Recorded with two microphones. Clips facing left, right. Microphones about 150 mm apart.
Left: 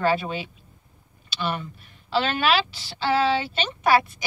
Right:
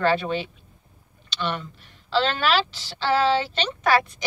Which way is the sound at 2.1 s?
10° left (ahead or behind).